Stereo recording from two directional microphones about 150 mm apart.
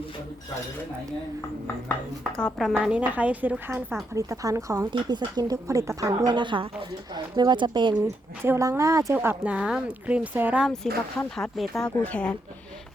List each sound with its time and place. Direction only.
2.3 s a woman's voice: centre (ahead or behind); by 7.9 s 30° right (ahead or behind)
8.0 s speech: 20° right (ahead or behind)
9.1 s speech: 10° right (ahead or behind)
11.3 s a woman's voice: centre (ahead or behind)